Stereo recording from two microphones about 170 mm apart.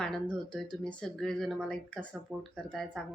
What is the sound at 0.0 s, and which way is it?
A woman's voice, 5° left (ahead or behind).